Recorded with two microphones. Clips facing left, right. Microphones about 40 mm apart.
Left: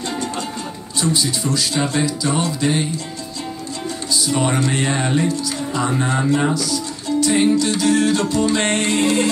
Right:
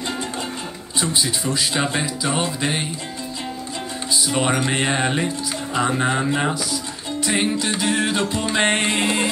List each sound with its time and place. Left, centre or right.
1.0 s speech: centre
4.1 s speech: right